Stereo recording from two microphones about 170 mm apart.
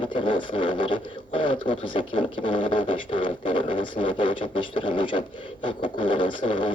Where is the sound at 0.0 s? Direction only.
30° left (ahead or behind).